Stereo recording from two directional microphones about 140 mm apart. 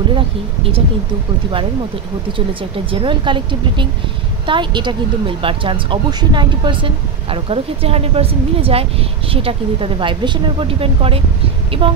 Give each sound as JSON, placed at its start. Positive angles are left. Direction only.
{"t": 2.9, "sound": "speech", "side_deg": -35}